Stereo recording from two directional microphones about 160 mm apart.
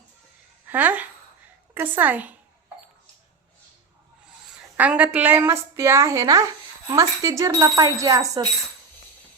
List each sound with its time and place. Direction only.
0.7 s a woman's voice: 10° right (ahead or behind)
4.8 s a woman's voice: 10° right (ahead or behind)